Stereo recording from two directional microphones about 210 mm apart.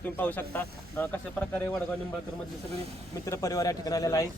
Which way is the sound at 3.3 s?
15° left (ahead or behind).